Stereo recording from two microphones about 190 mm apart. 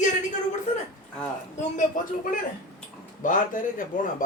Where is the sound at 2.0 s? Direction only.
45° left (ahead or behind).